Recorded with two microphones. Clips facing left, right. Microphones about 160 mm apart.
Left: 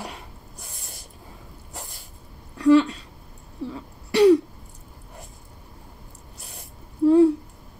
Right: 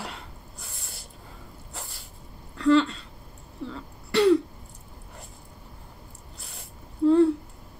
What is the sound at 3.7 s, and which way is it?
Throat clearing, 15° left (ahead or behind).